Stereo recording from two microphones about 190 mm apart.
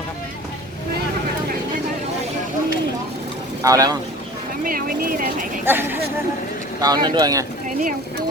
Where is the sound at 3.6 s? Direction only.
20° right (ahead or behind).